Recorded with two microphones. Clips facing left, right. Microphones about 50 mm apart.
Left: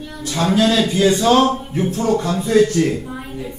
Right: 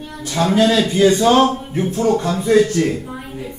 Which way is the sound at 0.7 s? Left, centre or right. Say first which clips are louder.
Right 2 dB; right.